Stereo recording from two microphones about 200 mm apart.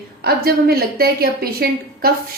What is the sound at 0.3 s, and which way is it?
A woman's voice, 50° right (ahead or behind).